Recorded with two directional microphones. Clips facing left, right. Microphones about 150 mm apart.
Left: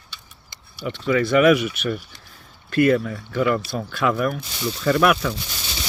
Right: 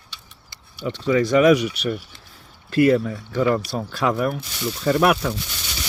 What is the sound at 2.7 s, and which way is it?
Speech, 25° right (ahead or behind).